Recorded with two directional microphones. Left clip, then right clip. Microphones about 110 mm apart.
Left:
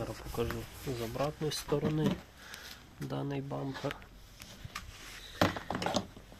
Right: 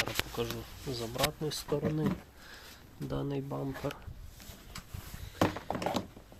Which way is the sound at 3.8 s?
5° left (ahead or behind).